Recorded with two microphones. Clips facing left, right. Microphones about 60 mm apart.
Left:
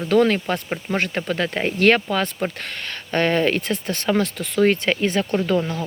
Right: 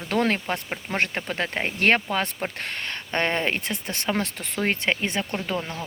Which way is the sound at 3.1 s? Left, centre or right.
Right.